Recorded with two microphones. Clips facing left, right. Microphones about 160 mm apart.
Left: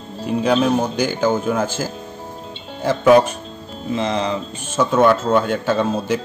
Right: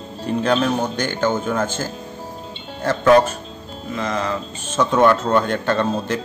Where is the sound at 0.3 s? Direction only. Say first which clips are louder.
Left 2 dB; 5° left (ahead or behind).